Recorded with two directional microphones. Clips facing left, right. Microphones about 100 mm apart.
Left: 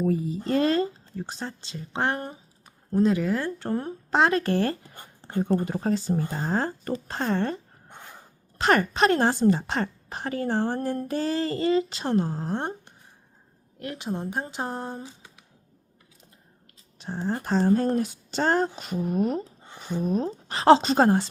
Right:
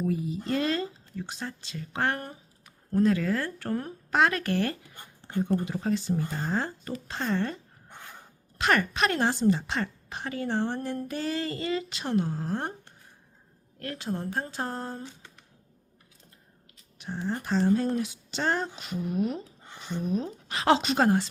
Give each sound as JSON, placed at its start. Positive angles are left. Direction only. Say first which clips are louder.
{"t": 0.0, "sound": "a woman's voice", "louder": "left 4 dB", "side_deg": 40}
{"t": 7.9, "sound": "a sound", "louder": "even", "side_deg": 15}
{"t": 8.5, "sound": "a woman's voice", "louder": "left 4 dB", "side_deg": 35}
{"t": 17.0, "sound": "speech", "louder": "left 3 dB", "side_deg": 35}
{"t": 20.3, "sound": "a woman's voice", "louder": "left 8 dB", "side_deg": 30}